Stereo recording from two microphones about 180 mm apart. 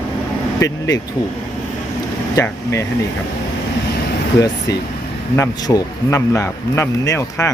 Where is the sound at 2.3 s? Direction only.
15° left (ahead or behind).